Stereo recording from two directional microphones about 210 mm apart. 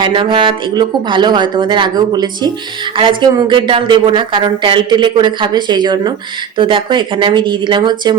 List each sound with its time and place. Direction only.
0.0 s speech: 20° right (ahead or behind)